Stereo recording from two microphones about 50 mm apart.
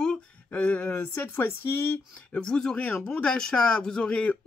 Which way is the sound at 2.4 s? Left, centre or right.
Centre.